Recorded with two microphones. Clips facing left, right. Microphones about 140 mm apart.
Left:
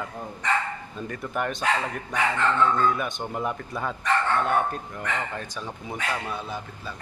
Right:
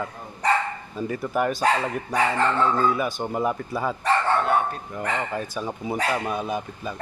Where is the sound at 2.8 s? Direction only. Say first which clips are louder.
Right 2 dB; 5° right (ahead or behind).